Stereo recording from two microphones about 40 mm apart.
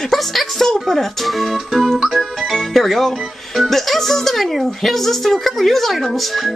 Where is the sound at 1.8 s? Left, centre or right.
Centre.